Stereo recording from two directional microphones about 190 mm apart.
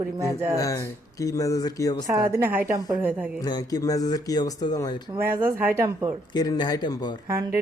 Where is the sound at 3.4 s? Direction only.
20° left (ahead or behind).